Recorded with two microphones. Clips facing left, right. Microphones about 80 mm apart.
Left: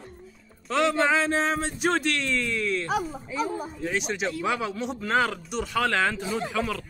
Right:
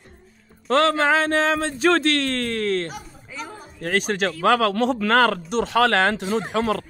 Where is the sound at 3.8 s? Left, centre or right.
Right.